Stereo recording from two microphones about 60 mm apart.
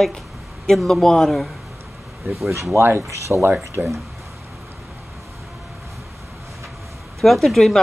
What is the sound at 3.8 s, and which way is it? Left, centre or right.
Speech, right.